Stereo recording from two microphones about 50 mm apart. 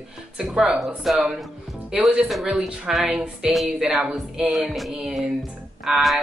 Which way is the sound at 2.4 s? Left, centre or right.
Centre.